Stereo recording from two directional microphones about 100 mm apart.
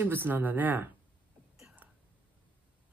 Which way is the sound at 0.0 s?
20° right (ahead or behind).